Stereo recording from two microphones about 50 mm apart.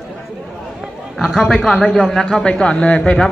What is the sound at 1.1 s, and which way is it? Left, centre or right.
A man's voice, centre.